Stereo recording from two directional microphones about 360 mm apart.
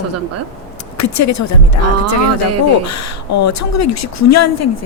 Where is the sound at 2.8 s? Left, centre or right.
Left.